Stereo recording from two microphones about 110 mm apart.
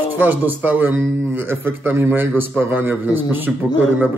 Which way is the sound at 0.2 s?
15° right (ahead or behind).